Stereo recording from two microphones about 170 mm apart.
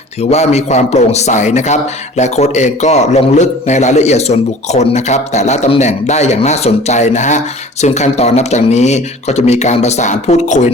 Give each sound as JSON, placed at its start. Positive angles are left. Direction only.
{"t": 0.2, "sound": "a man's voice", "side_deg": 40}